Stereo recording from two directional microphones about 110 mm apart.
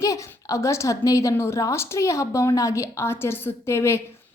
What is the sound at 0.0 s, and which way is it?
A woman's voice, 30° left (ahead or behind).